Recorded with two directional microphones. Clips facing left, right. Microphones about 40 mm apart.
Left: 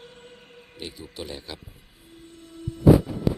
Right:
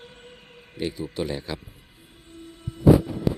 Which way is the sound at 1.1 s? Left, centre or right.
Right.